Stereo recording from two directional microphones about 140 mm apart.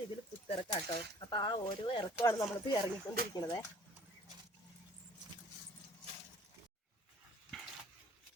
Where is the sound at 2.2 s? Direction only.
20° left (ahead or behind).